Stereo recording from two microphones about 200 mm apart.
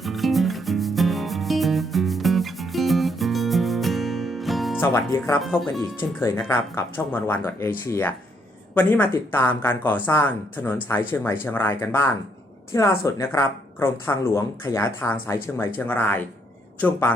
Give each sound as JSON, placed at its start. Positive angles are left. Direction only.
{"t": 0.0, "sound": "music", "side_deg": 0}
{"t": 4.8, "sound": "a woman's voice", "side_deg": 15}
{"t": 5.4, "sound": "speech", "side_deg": 0}
{"t": 6.0, "sound": "a woman's voice", "side_deg": 10}